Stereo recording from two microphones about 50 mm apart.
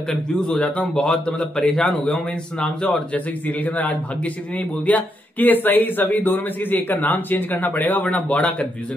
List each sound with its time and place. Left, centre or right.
0.5 s a man's voice: left
3.4 s a man's voice: left